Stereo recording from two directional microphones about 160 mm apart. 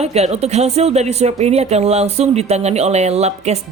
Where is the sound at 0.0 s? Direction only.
40° right (ahead or behind).